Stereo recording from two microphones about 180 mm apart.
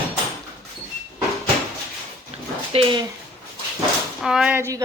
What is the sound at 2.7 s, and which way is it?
Speech, 30° right (ahead or behind).